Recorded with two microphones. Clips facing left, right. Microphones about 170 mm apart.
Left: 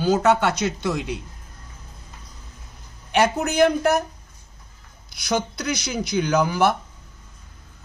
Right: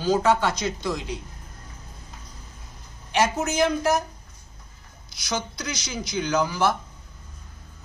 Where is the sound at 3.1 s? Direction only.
60° left (ahead or behind).